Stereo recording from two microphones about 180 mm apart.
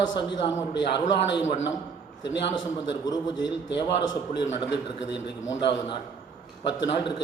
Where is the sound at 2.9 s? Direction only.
25° left (ahead or behind).